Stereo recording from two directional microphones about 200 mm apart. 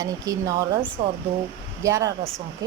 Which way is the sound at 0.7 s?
30° right (ahead or behind).